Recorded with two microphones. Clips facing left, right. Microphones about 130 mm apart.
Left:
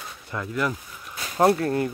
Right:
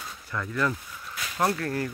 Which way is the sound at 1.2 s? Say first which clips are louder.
Left 7 dB; 30° left (ahead or behind).